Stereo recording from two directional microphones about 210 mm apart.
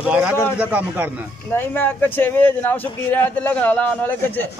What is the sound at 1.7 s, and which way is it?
A man's voice, 10° left (ahead or behind).